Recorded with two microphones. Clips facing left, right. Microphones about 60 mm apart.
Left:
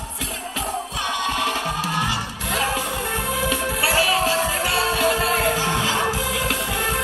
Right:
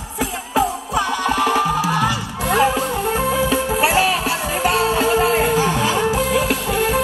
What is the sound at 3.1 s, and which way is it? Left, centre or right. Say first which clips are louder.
Music: right 5 dB; right.